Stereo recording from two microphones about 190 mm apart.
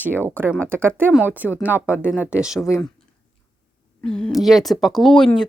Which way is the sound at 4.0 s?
5° left (ahead or behind).